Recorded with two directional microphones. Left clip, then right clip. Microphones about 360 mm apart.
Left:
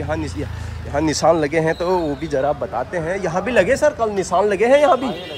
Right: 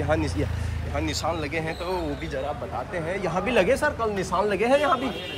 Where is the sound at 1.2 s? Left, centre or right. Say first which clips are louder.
Left 12 dB; centre.